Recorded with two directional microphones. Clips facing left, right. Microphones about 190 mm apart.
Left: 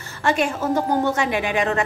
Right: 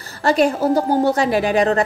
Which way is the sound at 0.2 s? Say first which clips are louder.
Right 5 dB; 35° right (ahead or behind).